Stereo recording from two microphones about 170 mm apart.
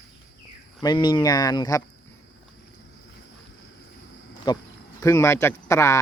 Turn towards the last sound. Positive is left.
turn(degrees=15)  # may be behind; listen again after turning